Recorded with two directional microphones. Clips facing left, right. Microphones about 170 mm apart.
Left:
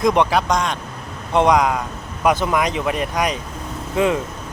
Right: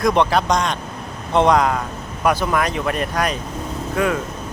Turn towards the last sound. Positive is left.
turn(degrees=20)  # may be behind; listen again after turning